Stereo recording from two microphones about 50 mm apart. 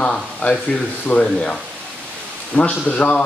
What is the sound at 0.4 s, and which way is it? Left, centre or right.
A man's voice, left.